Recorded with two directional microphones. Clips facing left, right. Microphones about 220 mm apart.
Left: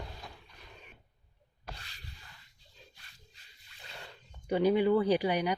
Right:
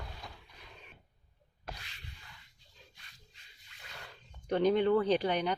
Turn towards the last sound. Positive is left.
turn(degrees=10)  # may be behind; listen again after turning